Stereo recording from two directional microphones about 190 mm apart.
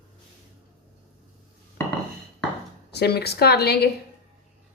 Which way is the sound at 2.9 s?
60° left (ahead or behind).